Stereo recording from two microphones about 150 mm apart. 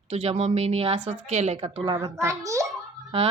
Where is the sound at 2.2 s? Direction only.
20° right (ahead or behind).